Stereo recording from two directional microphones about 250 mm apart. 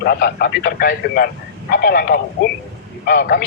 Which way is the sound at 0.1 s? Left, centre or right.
Left.